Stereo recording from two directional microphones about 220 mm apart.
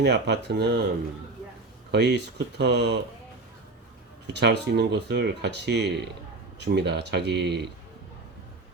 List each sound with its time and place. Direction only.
0.0 s speech: 50° right (ahead or behind)
1.9 s speech: 50° right (ahead or behind)
4.3 s speech: 50° right (ahead or behind)